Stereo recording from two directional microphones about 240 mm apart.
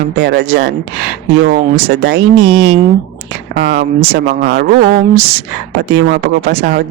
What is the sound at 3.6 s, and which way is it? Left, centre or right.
Speech, right.